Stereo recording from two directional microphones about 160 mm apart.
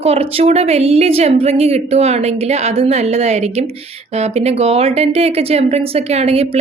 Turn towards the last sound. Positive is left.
turn(degrees=-40)  # may be behind; listen again after turning